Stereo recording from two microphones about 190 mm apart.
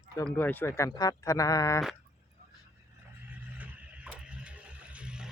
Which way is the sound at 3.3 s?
10° right (ahead or behind).